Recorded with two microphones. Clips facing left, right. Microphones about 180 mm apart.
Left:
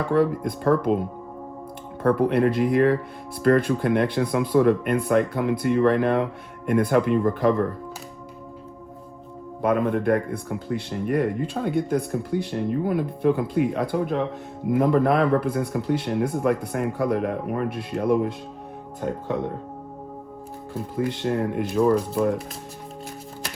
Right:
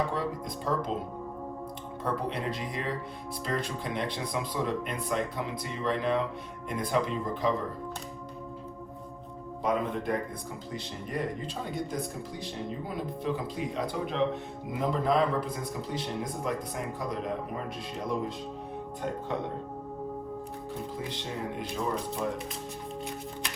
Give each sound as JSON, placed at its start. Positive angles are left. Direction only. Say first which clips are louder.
{"t": 0.1, "sound": "speech", "louder": "left 12 dB", "side_deg": 60}
{"t": 2.0, "sound": "speech", "louder": "left 13 dB", "side_deg": 60}
{"t": 9.6, "sound": "speech", "louder": "left 8 dB", "side_deg": 60}
{"t": 20.9, "sound": "speech", "louder": "left 11 dB", "side_deg": 60}